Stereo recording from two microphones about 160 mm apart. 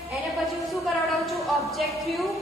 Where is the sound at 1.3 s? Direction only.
Centre (ahead or behind).